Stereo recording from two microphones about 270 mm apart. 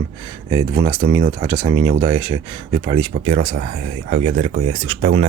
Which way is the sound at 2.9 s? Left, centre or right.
Right.